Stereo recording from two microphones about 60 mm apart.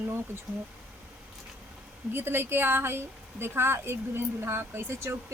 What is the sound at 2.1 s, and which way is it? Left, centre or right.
Speech, right.